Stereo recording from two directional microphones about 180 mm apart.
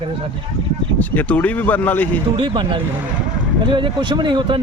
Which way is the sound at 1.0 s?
10° left (ahead or behind).